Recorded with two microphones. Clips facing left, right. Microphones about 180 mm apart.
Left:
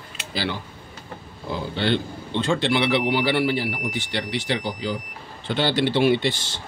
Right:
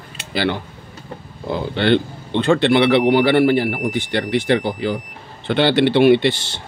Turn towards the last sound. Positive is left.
turn(degrees=-70)  # may be behind; listen again after turning